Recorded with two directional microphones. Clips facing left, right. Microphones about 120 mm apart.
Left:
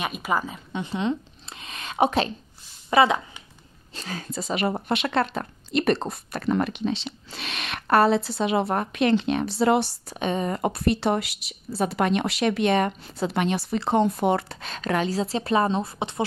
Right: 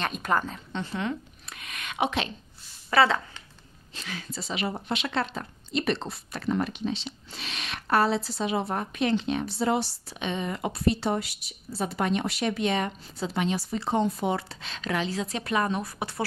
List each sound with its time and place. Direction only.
0.0 s speech: 5° left (ahead or behind)
0.9 s a sound: 25° left (ahead or behind); by 2.2 s 40° left (ahead or behind)
2.9 s speech: 15° left (ahead or behind)
3.9 s speech: 40° left (ahead or behind); by 9.9 s 65° left (ahead or behind)
10.0 s speech: 45° left (ahead or behind); by 16.3 s 20° left (ahead or behind)